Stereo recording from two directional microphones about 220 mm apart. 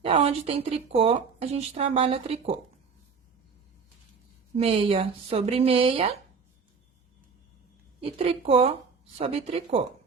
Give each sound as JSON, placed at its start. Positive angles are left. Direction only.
{"t": 0.0, "sound": "a woman's voice", "side_deg": -25}
{"t": 4.5, "sound": "a woman's voice", "side_deg": -25}
{"t": 8.0, "sound": "a woman's voice", "side_deg": -25}